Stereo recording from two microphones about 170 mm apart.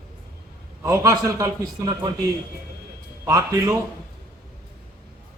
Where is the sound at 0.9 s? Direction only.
15° right (ahead or behind).